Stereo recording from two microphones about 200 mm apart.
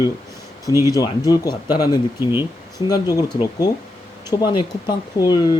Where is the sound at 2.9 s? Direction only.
20° left (ahead or behind).